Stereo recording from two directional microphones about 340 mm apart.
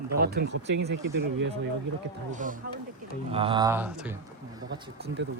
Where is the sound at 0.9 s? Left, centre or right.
Right.